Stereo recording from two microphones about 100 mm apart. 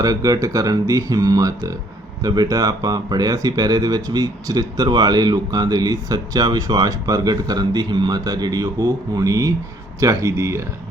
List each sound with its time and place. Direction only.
0.0 s speech: 35° right (ahead or behind)